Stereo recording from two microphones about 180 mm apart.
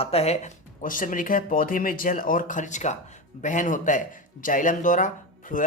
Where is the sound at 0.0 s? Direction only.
35° left (ahead or behind).